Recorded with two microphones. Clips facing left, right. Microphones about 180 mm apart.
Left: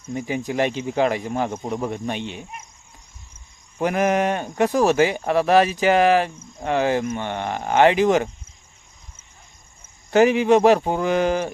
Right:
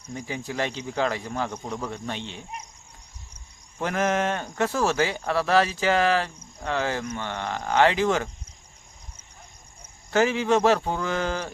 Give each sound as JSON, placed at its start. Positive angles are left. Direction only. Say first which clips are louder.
{"t": 0.1, "sound": "speech", "louder": "left 7 dB", "side_deg": 15}
{"t": 3.8, "sound": "speech", "louder": "left 5 dB", "side_deg": 15}
{"t": 10.1, "sound": "speech", "louder": "left 6 dB", "side_deg": 15}